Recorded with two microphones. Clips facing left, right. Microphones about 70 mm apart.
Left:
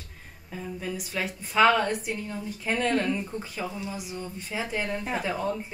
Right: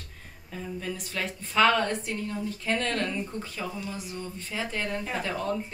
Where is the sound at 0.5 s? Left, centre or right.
Centre.